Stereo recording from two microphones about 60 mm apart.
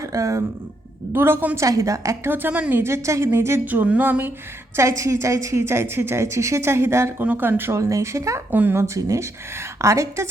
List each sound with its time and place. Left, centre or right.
0.0 s speech: right
1.1 s speech: right
1.5 s speech: right
2.2 s speech: right
2.7 s speech: right
3.7 s speech: right
4.8 s speech: right
5.6 s speech: right
7.2 s speech: right
7.8 s speech: right
8.4 s speech: right
9.0 s speech: right